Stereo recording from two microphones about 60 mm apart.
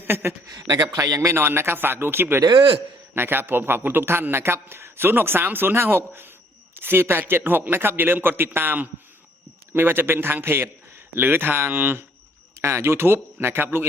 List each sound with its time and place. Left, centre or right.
0.0 s a man's voice: right
0.5 s a man's voice: right
1.3 s a man's voice: right
12.6 s a man's voice: right